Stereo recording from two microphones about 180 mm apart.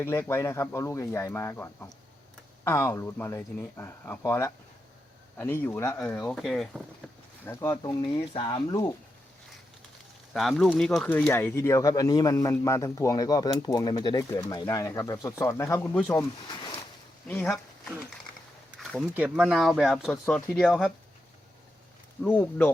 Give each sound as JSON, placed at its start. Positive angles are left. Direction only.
{"t": 0.0, "sound": "speech", "side_deg": 15}
{"t": 7.4, "sound": "speech", "side_deg": 15}
{"t": 10.3, "sound": "speech", "side_deg": 0}
{"t": 17.2, "sound": "a sound", "side_deg": 10}
{"t": 18.8, "sound": "speech", "side_deg": 0}
{"t": 22.2, "sound": "speech", "side_deg": 10}